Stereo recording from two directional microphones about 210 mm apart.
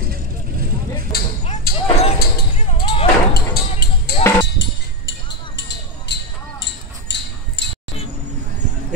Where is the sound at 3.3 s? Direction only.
50° left (ahead or behind).